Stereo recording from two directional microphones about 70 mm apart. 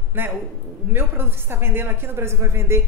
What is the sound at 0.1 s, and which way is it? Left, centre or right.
A man's voice, right.